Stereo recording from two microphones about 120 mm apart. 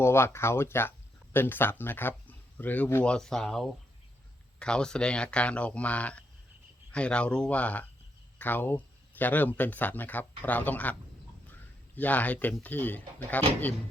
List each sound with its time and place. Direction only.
0.0 s speech: 20° left (ahead or behind)
11.9 s speech: 15° left (ahead or behind)